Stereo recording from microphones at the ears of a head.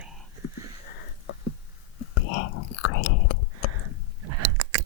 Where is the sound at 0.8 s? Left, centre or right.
Left.